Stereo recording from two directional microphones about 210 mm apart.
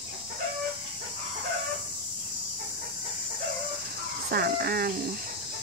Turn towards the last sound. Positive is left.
turn(degrees=-45)  # may be behind; listen again after turning